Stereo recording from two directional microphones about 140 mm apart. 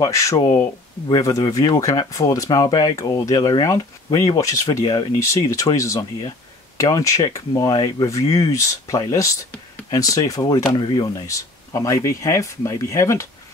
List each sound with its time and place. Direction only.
0.0 s speech: 20° left (ahead or behind)